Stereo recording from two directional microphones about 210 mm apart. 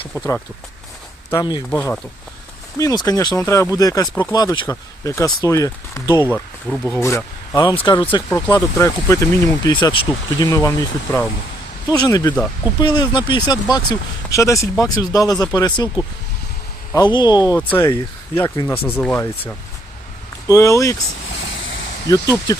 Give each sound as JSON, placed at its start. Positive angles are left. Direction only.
{"t": 1.3, "sound": "speech", "side_deg": 20}
{"t": 22.0, "sound": "speech", "side_deg": 15}